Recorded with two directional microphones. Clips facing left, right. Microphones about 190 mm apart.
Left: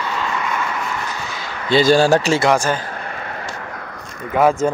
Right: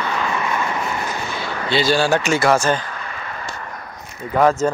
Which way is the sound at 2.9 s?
55° left (ahead or behind).